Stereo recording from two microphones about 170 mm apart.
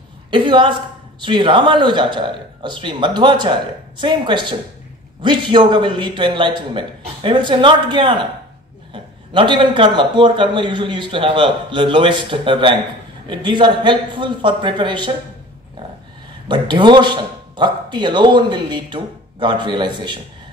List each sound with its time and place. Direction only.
0.3 s a man's voice: 30° right (ahead or behind)
16.4 s a man's voice: 25° right (ahead or behind)